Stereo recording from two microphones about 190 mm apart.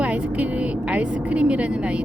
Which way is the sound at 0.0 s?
5° right (ahead or behind).